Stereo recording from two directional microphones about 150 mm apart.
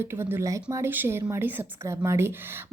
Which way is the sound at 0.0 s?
15° right (ahead or behind).